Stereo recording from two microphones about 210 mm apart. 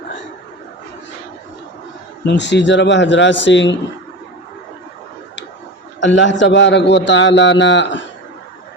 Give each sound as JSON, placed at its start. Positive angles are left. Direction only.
{"t": 2.2, "sound": "a man's voice", "side_deg": 60}
{"t": 6.0, "sound": "a man's voice", "side_deg": 60}